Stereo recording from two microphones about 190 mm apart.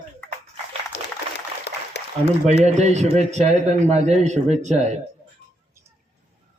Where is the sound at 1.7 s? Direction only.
65° left (ahead or behind).